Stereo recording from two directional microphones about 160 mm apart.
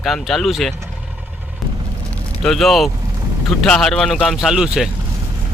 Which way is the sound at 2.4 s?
Centre (ahead or behind).